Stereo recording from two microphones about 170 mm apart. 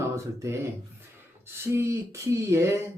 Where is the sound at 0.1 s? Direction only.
15° right (ahead or behind).